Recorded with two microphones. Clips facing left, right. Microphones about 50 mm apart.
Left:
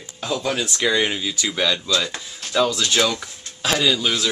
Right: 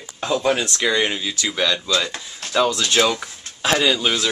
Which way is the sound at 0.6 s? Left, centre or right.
Centre.